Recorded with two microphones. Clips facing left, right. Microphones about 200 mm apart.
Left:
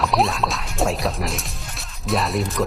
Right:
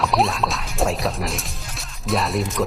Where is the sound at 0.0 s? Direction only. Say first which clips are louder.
Even; centre (ahead or behind).